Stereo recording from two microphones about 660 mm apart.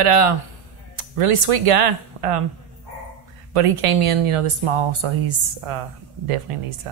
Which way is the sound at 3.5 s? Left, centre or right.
Right.